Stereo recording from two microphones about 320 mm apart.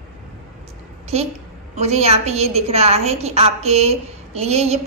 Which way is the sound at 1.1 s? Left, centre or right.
Centre.